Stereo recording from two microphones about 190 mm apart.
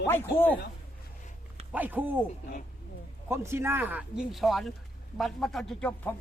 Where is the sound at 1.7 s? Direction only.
10° right (ahead or behind).